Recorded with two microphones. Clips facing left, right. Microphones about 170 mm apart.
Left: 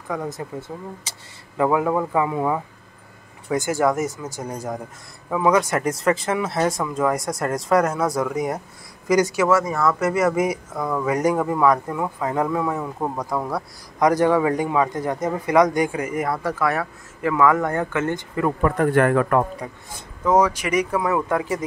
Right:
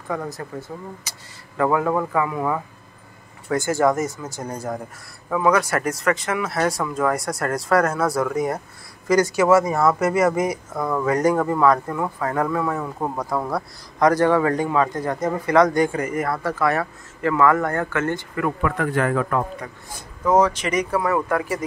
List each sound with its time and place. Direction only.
0.3 s speech: 25° left (ahead or behind)
1.6 s a man's voice: 15° left (ahead or behind)
9.6 s speech: 25° right (ahead or behind)
9.9 s a man's voice: centre (ahead or behind); by 18.5 s 20° left (ahead or behind)
18.6 s a man's voice: 35° left (ahead or behind)
18.9 s a man's voice: 60° left (ahead or behind)
20.3 s a man's voice: 10° left (ahead or behind)